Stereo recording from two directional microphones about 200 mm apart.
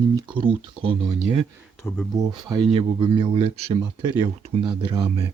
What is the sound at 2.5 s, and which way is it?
Speech, 25° right (ahead or behind).